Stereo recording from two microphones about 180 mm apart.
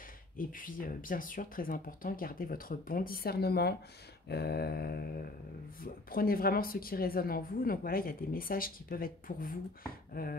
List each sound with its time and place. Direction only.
0.4 s a woman's voice: 50° left (ahead or behind)